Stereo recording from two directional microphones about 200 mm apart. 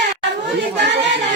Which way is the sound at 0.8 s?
60° right (ahead or behind).